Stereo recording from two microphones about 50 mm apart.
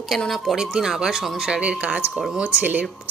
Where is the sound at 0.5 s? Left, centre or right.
Centre.